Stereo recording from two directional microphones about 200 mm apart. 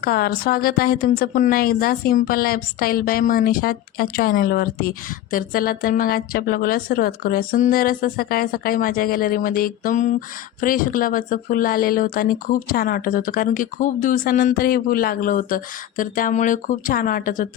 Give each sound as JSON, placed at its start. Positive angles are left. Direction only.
{"t": 0.0, "sound": "a woman's voice", "side_deg": 50}